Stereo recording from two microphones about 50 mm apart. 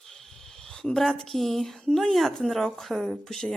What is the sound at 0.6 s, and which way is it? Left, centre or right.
A woman's voice, centre.